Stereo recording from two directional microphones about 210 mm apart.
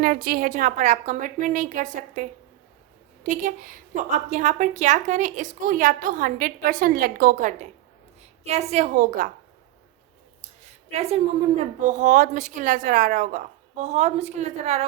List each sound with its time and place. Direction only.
0.0 s a woman's voice: 45° right (ahead or behind)
10.9 s a woman's voice: 30° right (ahead or behind)